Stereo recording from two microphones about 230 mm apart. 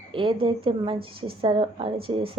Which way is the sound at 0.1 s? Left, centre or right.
Right.